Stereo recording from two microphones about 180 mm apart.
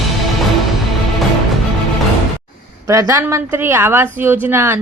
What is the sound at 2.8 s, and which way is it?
A woman's voice, 15° right (ahead or behind).